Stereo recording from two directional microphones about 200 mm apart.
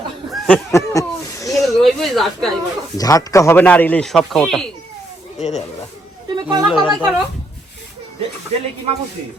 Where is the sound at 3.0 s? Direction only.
15° left (ahead or behind).